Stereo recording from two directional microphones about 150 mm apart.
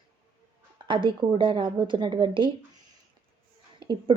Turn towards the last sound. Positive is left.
turn(degrees=-30)  # may be behind; listen again after turning